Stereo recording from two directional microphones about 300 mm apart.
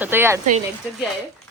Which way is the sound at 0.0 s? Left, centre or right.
Centre.